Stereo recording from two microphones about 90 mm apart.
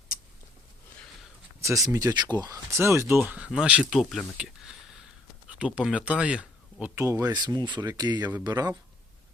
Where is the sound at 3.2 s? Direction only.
15° right (ahead or behind).